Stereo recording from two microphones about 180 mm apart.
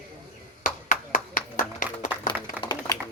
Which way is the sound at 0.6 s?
45° left (ahead or behind).